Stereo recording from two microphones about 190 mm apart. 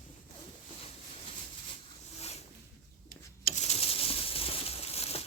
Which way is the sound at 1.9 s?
35° left (ahead or behind).